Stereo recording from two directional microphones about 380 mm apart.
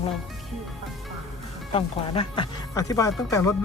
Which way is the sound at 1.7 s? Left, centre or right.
Centre.